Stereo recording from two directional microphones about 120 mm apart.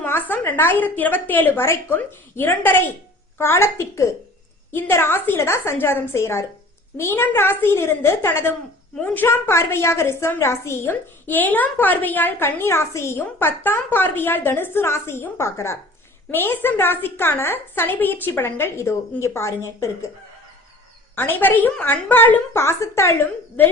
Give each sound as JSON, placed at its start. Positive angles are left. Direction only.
{"t": 0.0, "sound": "a woman's voice", "side_deg": 15}
{"t": 21.2, "sound": "a woman's voice", "side_deg": 15}